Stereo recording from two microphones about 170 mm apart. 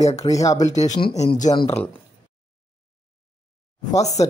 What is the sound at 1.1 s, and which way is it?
Speech, 20° left (ahead or behind).